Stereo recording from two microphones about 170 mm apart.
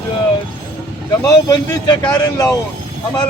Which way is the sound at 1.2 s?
25° left (ahead or behind).